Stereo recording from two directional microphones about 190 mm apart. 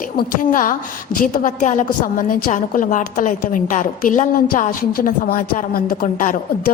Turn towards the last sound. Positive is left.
turn(degrees=45)  # may be behind; listen again after turning